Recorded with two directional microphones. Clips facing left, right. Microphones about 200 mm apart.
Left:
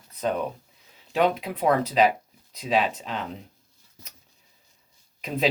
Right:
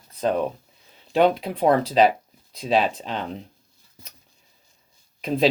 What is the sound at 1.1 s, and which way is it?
Speech, 30° right (ahead or behind).